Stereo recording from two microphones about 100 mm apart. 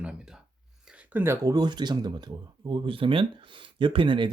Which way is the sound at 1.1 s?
20° right (ahead or behind).